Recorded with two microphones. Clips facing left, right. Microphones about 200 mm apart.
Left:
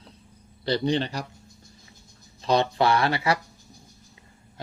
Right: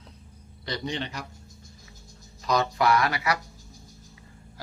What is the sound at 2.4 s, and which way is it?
Speech, 30° left (ahead or behind).